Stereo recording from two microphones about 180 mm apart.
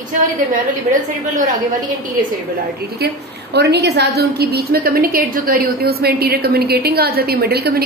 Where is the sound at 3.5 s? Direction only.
65° right (ahead or behind).